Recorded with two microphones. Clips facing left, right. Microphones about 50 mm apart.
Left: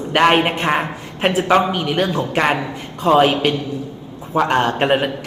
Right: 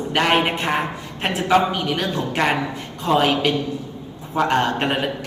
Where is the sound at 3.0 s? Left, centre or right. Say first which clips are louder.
Left 4 dB; left.